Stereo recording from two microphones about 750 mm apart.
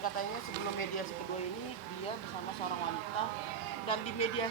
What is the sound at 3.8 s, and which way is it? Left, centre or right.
Speech, centre.